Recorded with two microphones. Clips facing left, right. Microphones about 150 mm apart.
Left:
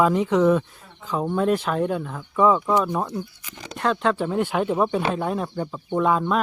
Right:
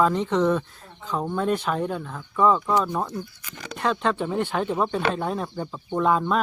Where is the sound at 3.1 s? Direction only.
20° left (ahead or behind).